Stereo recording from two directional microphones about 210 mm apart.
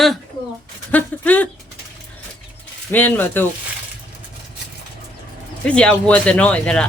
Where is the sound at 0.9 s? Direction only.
10° left (ahead or behind).